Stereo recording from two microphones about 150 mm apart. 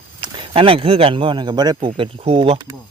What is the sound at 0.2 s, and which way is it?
Speech, 35° right (ahead or behind).